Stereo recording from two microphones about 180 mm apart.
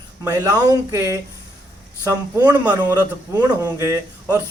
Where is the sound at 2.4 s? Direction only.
20° right (ahead or behind).